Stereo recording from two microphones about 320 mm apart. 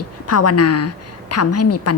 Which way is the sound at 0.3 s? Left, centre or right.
Left.